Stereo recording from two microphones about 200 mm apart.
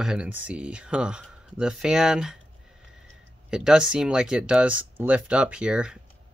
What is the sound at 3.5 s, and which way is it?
Speech, 5° right (ahead or behind).